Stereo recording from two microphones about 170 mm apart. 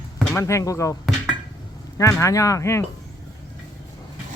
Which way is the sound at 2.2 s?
20° left (ahead or behind).